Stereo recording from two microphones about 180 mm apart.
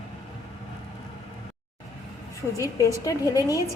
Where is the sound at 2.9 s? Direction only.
20° left (ahead or behind).